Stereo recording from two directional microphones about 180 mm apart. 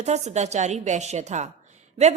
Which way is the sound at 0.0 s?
40° right (ahead or behind).